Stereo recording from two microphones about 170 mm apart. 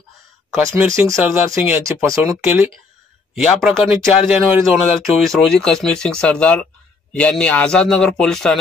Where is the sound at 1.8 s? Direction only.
20° right (ahead or behind).